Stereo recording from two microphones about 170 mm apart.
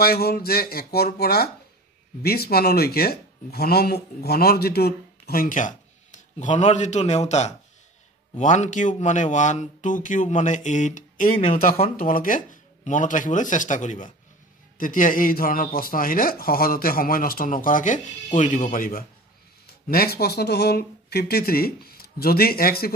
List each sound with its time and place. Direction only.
0.0 s speech: 65° left (ahead or behind); by 11.3 s 50° left (ahead or behind)
11.3 s speech: 35° left (ahead or behind)
11.6 s speech: 55° left (ahead or behind)